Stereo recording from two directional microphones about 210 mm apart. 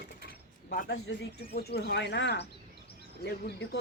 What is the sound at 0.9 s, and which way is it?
Speech, 55° left (ahead or behind).